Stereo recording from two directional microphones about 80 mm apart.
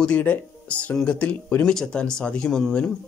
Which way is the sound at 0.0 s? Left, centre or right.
Centre.